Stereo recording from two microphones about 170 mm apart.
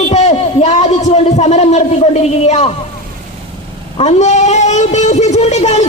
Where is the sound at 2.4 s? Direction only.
40° left (ahead or behind).